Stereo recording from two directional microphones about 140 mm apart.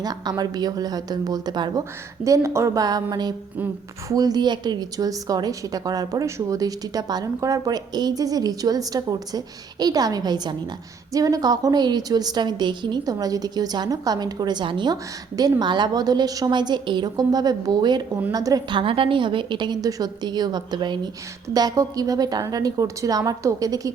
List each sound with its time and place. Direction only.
0.0 s a woman's voice: 30° right (ahead or behind)